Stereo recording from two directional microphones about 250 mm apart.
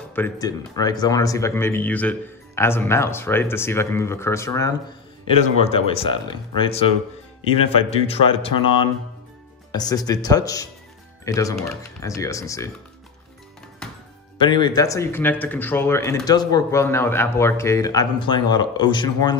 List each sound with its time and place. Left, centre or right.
0.1 s speech: centre
14.4 s speech: centre